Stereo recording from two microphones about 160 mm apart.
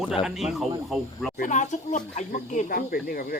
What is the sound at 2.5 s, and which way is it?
Speech, 60° left (ahead or behind).